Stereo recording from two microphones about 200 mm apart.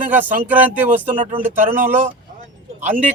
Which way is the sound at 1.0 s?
40° right (ahead or behind).